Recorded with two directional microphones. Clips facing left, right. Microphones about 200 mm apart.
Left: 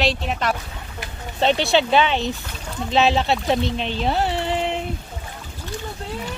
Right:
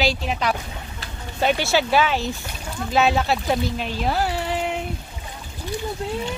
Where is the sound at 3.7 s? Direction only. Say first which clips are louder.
Left 2 dB; 30° left (ahead or behind).